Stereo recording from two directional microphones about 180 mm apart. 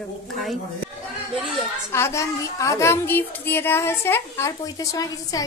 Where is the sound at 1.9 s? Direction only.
15° left (ahead or behind).